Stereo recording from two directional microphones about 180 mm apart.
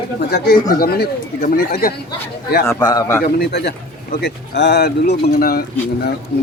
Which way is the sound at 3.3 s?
70° left (ahead or behind).